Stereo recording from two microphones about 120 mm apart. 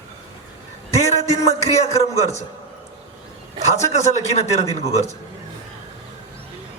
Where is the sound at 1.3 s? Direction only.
25° left (ahead or behind).